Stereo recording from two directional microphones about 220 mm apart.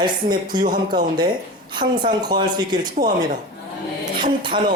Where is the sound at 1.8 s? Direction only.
20° right (ahead or behind).